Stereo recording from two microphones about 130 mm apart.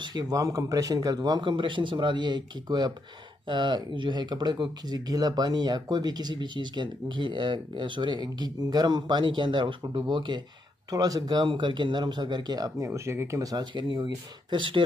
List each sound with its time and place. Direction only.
0.0 s speech: 35° right (ahead or behind)